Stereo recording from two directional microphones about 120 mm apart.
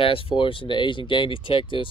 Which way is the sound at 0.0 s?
50° left (ahead or behind).